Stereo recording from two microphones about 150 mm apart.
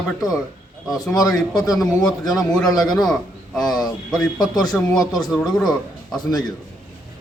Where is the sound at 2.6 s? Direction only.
Centre (ahead or behind).